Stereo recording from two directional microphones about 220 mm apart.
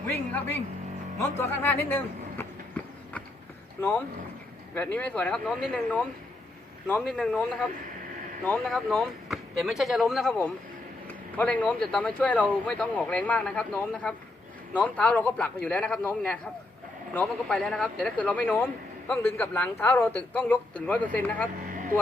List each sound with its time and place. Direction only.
1.2 s a sound: 10° left (ahead or behind)
3.8 s speech: 10° left (ahead or behind)
21.7 s vehicle: 40° right (ahead or behind)